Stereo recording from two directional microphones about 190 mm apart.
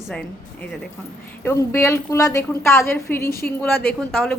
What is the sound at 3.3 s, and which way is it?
Speech, 55° left (ahead or behind).